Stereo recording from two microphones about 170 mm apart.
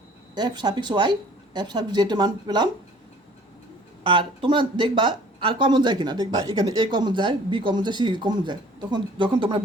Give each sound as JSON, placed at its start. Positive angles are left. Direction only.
{"t": 0.3, "sound": "speech", "side_deg": -25}
{"t": 4.0, "sound": "speech", "side_deg": -30}